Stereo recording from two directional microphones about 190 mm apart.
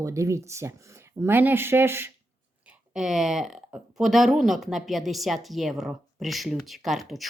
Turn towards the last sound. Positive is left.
turn(degrees=0)  # may be behind; listen again after turning